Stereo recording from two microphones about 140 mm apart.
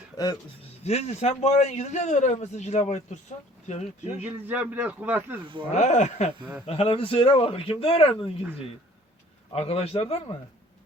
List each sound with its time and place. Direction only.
0.2 s speech: 30° left (ahead or behind)
0.9 s a man's voice: 50° left (ahead or behind)
4.2 s a man's voice: 10° right (ahead or behind)
5.7 s speech: 55° left (ahead or behind)
6.7 s speech: 40° left (ahead or behind)
9.5 s a man's voice: 45° left (ahead or behind)